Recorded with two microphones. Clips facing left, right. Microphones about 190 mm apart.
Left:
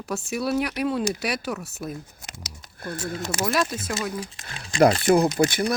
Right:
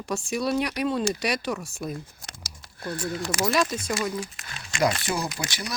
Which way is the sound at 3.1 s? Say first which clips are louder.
Even; 25° left (ahead or behind).